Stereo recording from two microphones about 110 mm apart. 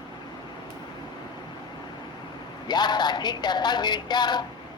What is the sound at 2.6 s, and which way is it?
Speech, 40° left (ahead or behind).